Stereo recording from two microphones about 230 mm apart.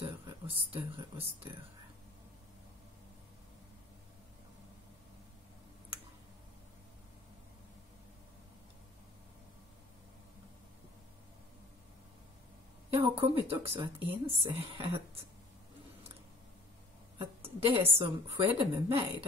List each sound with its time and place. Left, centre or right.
0.0 s a sound: right
12.9 s speech: right
17.2 s speech: right